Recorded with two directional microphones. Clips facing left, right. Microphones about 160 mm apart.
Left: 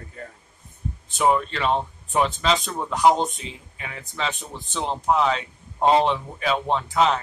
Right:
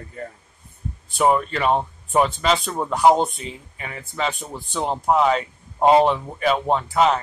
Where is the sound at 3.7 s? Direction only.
5° right (ahead or behind).